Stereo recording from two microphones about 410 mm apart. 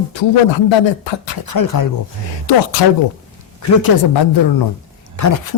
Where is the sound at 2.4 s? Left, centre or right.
Left.